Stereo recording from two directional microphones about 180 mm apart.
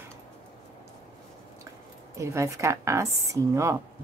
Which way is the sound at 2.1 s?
15° right (ahead or behind).